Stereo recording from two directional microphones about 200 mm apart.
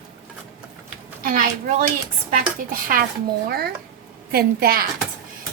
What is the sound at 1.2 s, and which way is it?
A child's voice, 40° right (ahead or behind).